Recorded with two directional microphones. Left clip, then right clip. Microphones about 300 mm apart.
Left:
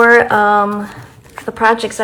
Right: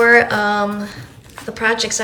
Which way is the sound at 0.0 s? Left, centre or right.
Centre.